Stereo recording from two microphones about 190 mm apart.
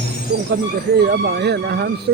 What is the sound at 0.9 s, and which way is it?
Speech, 60° right (ahead or behind).